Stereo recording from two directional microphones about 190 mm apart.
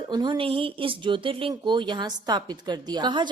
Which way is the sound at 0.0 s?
25° right (ahead or behind).